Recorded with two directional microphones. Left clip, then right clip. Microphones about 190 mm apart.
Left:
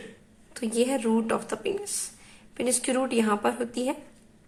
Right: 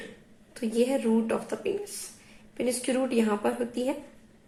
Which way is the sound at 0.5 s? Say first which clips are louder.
Even; 20° left (ahead or behind).